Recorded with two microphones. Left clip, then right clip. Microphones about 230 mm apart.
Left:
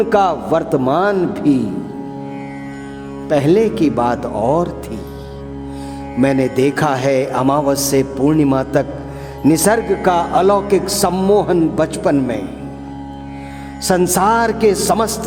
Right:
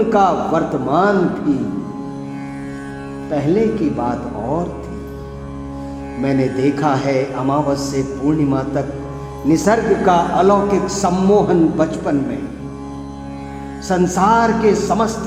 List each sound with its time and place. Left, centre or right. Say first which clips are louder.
0.1 s speech: left 1 dB; left
3.2 s speech: left 4 dB; left
6.2 s speech: left 3 dB; left
13.8 s speech: left 1 dB; left